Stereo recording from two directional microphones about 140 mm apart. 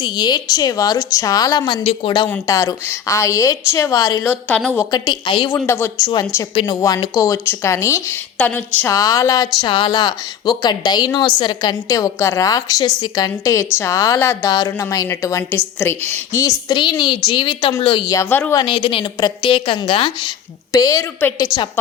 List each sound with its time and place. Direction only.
0.0 s a woman's voice: 30° left (ahead or behind)
1.8 s speech: 45° left (ahead or behind)
2.5 s a woman's voice: 20° left (ahead or behind)
4.3 s speech: 10° left (ahead or behind)
4.9 s a woman's voice: 30° left (ahead or behind)
5.5 s a woman's voice: 20° left (ahead or behind)
6.5 s a woman's voice: 35° left (ahead or behind)
8.4 s speech: 10° left (ahead or behind)
8.8 s a woman's voice: 25° left (ahead or behind)
18.0 s speech: 20° left (ahead or behind)
18.5 s a woman's voice: 35° left (ahead or behind)
20.7 s a woman's voice: 25° left (ahead or behind)